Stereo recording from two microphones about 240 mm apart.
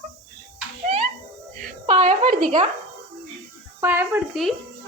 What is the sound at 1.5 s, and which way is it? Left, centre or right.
Speech, right.